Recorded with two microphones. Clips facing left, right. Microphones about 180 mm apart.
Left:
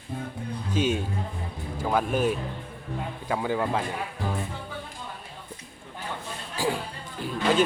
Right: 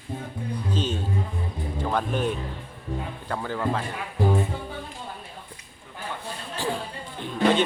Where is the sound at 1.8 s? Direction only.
5° left (ahead or behind).